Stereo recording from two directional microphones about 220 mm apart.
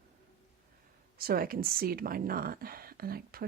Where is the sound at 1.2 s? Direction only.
40° right (ahead or behind).